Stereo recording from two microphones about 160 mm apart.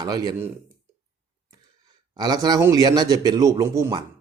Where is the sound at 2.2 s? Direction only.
25° right (ahead or behind).